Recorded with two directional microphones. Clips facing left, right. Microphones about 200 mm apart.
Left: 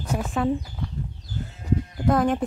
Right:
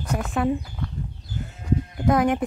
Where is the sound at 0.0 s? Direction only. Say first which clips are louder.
Right 1 dB; 5° left (ahead or behind).